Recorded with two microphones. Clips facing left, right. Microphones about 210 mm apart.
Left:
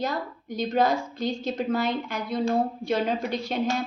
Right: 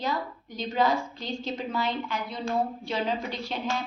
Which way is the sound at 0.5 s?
45° left (ahead or behind).